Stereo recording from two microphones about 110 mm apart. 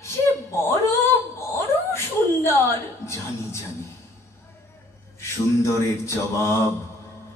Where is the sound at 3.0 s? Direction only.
25° left (ahead or behind).